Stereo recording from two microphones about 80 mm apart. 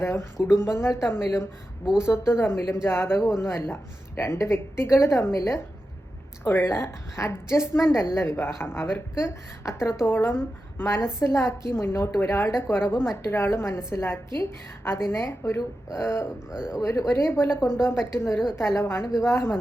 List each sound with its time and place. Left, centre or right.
0.0 s a woman's voice: left
16.5 s speech: centre
16.8 s a woman's voice: left
19.0 s speech: centre
19.3 s a woman's voice: left